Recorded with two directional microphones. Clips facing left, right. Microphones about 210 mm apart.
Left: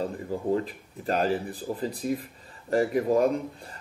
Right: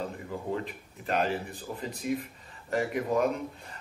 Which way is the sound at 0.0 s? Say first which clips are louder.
Left 6 dB; 35° left (ahead or behind).